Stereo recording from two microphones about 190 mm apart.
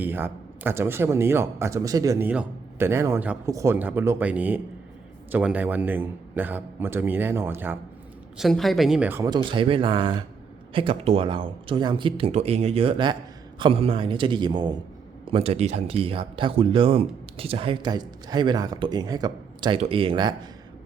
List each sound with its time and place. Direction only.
0.0 s speech: 10° right (ahead or behind)
8.4 s speech: centre (ahead or behind)
9.3 s speech: 25° right (ahead or behind)